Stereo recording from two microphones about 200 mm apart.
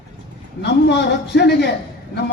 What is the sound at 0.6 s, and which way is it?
A man's voice, 55° left (ahead or behind).